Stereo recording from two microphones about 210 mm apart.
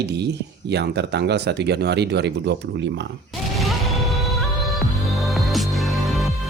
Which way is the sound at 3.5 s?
Centre (ahead or behind).